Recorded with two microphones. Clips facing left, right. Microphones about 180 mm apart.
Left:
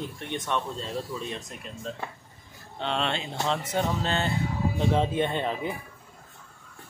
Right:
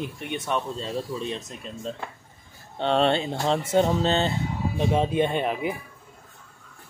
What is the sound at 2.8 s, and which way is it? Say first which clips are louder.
Speech: right 8 dB; 40° right (ahead or behind).